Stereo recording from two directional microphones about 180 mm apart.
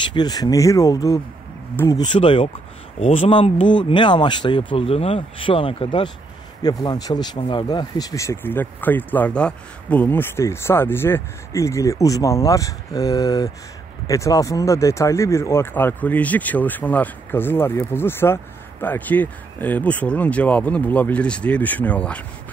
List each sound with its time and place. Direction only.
0.0 s speech: 25° left (ahead or behind)
2.1 s speech: 30° left (ahead or behind); by 22.2 s 5° left (ahead or behind)